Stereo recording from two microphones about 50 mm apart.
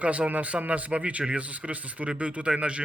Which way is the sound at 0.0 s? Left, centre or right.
Right.